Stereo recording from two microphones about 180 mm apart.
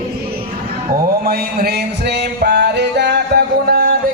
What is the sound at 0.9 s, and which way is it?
Music, 60° right (ahead or behind).